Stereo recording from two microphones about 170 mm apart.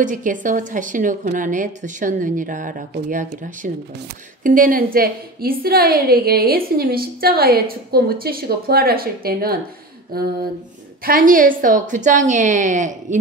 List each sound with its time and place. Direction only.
0.0 s a woman's voice: 50° right (ahead or behind)